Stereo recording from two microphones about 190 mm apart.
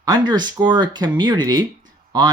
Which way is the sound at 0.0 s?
20° right (ahead or behind).